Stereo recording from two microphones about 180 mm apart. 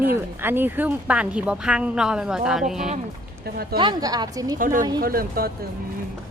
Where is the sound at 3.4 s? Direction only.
60° right (ahead or behind).